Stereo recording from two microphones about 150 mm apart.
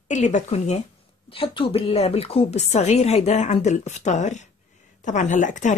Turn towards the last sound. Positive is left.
turn(degrees=55)  # may be behind; listen again after turning